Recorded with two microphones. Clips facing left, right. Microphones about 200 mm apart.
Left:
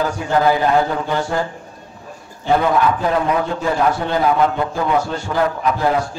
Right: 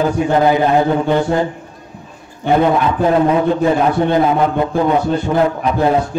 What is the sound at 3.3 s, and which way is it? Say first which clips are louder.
A man's voice: right 6 dB; 20° right (ahead or behind).